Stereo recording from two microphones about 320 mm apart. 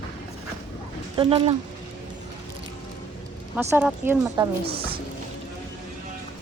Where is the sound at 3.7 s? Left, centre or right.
Centre.